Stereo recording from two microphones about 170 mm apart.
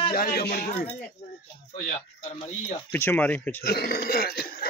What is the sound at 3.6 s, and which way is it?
Speech, 65° left (ahead or behind).